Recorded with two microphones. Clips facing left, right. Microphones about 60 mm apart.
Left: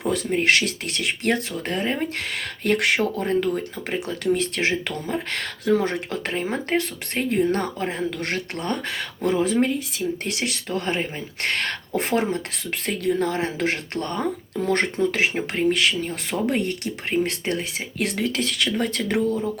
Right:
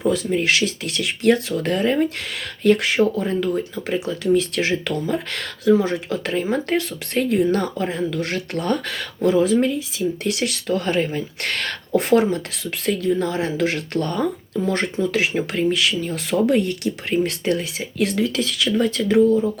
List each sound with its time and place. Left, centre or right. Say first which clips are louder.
0.1 s speech: left 2 dB; left
2.6 s speech: right 4 dB; left
3.0 s speech: right 3 dB; left
4.4 s speech: right 3 dB; left
5.6 s speech: right 4 dB; left
6.1 s speech: right 4 dB; left
13.0 s speech: left 1 dB; left
14.6 s speech: even; left
15.1 s speech: right 2 dB; left
15.7 s speech: right 1 dB; left